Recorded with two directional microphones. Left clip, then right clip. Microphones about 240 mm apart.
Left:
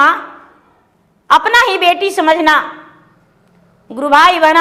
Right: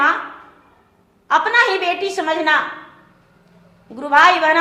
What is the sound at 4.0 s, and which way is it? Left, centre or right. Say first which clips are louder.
Speech: left 4 dB; left.